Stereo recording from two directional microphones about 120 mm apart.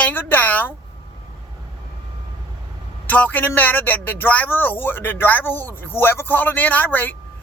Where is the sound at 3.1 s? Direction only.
15° left (ahead or behind).